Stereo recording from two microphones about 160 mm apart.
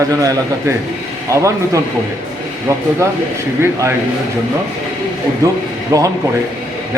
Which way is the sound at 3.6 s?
15° right (ahead or behind).